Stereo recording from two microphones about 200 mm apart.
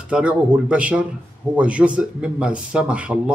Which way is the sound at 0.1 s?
5° right (ahead or behind).